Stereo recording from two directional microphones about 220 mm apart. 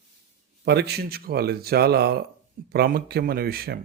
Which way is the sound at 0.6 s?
50° right (ahead or behind).